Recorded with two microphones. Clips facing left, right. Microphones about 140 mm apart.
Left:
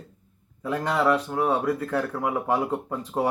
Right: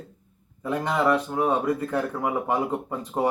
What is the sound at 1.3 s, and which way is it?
Speech, 10° right (ahead or behind).